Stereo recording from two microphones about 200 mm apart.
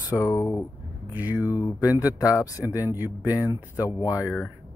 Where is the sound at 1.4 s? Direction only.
15° left (ahead or behind).